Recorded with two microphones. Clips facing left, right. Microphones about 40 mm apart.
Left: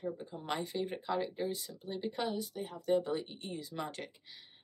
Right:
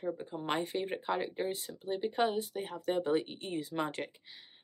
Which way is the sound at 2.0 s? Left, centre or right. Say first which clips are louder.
Right 5 dB; right.